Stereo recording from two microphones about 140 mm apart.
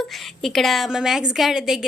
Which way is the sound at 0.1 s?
Centre (ahead or behind).